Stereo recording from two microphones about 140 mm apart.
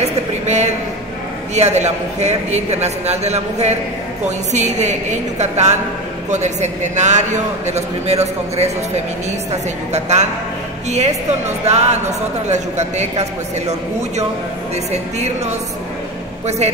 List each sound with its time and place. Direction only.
0.5 s a man's voice: 55° right (ahead or behind)
11.6 s a man's voice: 50° right (ahead or behind)